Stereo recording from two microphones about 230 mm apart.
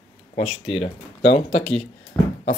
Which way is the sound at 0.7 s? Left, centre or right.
Left.